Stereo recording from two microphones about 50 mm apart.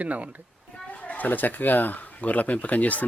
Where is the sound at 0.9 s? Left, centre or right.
Left.